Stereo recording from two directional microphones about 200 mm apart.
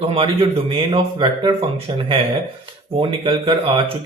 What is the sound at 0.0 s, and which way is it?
Speech, 30° right (ahead or behind).